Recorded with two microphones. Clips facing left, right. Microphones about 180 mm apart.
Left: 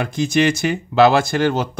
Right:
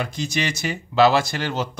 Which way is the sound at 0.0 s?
55° left (ahead or behind).